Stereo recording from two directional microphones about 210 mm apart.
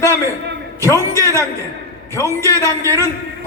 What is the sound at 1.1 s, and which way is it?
Speech, 15° right (ahead or behind).